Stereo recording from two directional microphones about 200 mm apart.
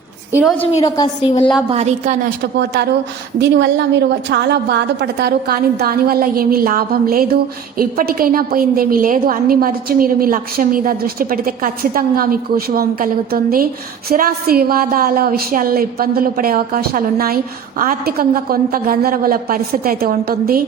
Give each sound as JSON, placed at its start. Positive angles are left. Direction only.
{"t": 0.3, "sound": "a woman's voice", "side_deg": -10}
{"t": 0.8, "sound": "a woman's voice", "side_deg": 20}
{"t": 1.7, "sound": "a woman's voice", "side_deg": -35}
{"t": 2.4, "sound": "a woman's voice", "side_deg": -55}